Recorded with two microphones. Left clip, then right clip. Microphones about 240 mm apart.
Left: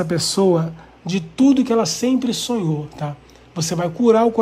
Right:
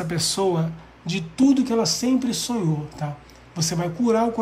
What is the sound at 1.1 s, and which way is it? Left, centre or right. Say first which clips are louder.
A woman's voice: left 3 dB; centre.